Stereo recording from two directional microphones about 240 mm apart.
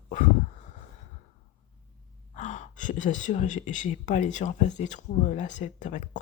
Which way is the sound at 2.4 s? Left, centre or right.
Left.